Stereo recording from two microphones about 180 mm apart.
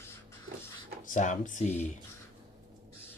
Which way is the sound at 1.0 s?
45° left (ahead or behind).